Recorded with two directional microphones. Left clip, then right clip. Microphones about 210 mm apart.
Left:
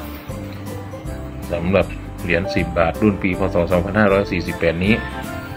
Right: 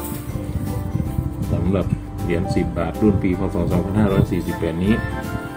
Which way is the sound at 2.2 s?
5° left (ahead or behind).